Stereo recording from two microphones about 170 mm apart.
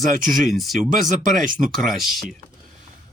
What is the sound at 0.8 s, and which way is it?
Speech, 55° right (ahead or behind).